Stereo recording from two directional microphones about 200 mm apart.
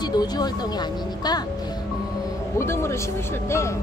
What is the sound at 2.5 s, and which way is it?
Speech, 15° left (ahead or behind).